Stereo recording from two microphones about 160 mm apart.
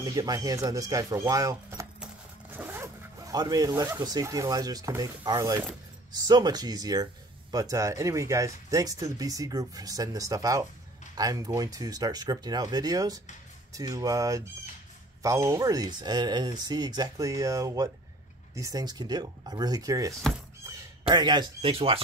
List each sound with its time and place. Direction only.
0.0 s speech: 25° right (ahead or behind)
2.5 s zipper: 15° right (ahead or behind)
4.0 s speech: 25° right (ahead or behind)